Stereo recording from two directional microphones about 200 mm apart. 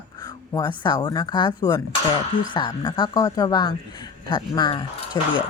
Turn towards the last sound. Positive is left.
turn(degrees=20)  # may be behind; listen again after turning